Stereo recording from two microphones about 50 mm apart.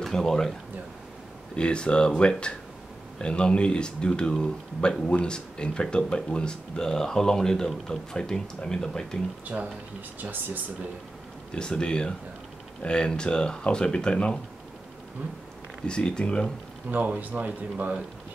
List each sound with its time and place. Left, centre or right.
0.0 s speech: centre
1.5 s speech: centre
9.5 s speech: right
10.2 s speech: right
11.5 s speech: centre
15.9 s speech: centre
16.9 s speech: right